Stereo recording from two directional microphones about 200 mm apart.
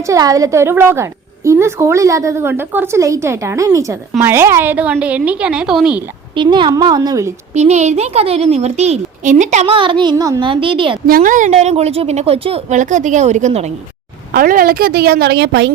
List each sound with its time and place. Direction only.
0.0 s a woman's voice: 15° right (ahead or behind)
6.3 s a woman's voice: 25° right (ahead or behind)
7.5 s a woman's voice: 35° right (ahead or behind)
11.0 s a woman's voice: 45° right (ahead or behind)
14.3 s a woman's voice: 45° right (ahead or behind)